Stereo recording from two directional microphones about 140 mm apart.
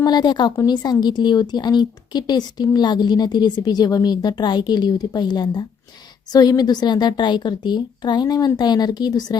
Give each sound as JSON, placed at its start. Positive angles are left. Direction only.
{"t": 0.0, "sound": "a woman's voice", "side_deg": 30}